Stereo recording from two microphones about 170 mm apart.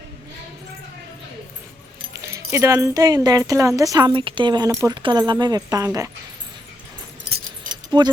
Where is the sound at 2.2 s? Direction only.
15° right (ahead or behind).